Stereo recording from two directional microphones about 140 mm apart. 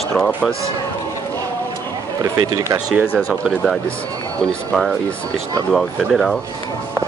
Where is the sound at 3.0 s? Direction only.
15° left (ahead or behind).